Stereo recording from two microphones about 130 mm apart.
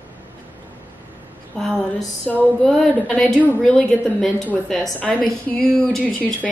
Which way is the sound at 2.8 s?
5° left (ahead or behind).